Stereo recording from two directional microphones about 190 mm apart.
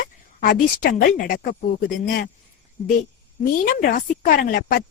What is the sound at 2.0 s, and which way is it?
Speech, 55° left (ahead or behind).